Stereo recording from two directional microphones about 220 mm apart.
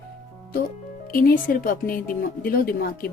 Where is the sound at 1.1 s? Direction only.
40° left (ahead or behind).